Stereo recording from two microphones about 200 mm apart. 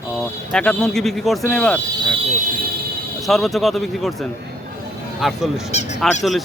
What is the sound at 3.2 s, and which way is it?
Speech, centre (ahead or behind).